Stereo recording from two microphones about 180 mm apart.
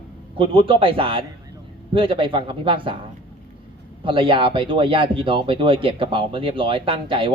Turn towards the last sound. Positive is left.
turn(degrees=-30)  # may be behind; listen again after turning